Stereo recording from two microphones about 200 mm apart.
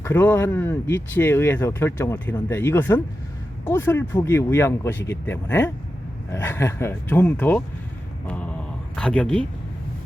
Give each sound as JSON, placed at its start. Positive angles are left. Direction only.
{"t": 0.0, "sound": "speech", "side_deg": 10}
{"t": 8.3, "sound": "a sound", "side_deg": 5}
{"t": 9.0, "sound": "speech", "side_deg": 5}